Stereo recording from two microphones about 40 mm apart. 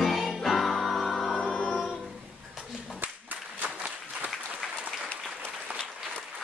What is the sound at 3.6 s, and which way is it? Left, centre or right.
Applause, right.